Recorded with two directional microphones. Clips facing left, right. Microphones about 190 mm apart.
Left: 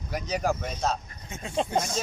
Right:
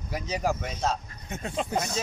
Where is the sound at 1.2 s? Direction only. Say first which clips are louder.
Right 6 dB; 65° right (ahead or behind).